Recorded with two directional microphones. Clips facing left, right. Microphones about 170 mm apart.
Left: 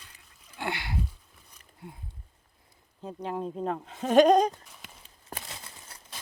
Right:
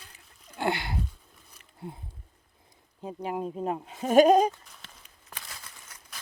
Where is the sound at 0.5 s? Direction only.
30° right (ahead or behind).